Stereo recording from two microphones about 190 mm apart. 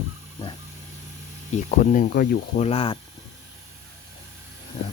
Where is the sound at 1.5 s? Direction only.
40° left (ahead or behind).